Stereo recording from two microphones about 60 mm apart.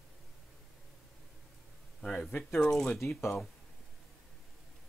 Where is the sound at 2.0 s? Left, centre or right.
Centre.